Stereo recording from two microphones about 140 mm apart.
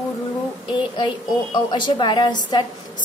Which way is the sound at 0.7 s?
35° left (ahead or behind).